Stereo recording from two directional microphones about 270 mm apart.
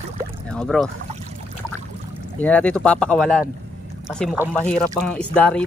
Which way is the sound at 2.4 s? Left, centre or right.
Centre.